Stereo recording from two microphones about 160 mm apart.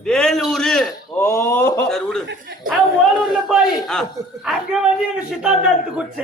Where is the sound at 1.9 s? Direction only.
5° left (ahead or behind).